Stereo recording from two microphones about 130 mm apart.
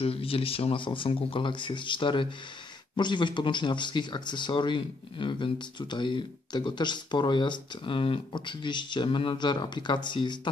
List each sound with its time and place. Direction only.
0.0 s speech: 45° left (ahead or behind)